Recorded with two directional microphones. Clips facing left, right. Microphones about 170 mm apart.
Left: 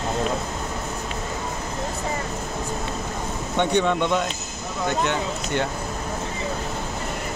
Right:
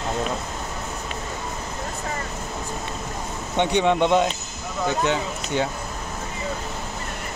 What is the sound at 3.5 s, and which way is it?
Speech, 15° right (ahead or behind).